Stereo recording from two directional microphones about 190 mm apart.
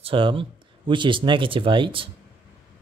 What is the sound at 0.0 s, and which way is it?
A man's voice, 25° right (ahead or behind).